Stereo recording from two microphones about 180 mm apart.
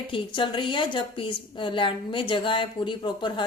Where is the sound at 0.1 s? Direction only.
30° left (ahead or behind).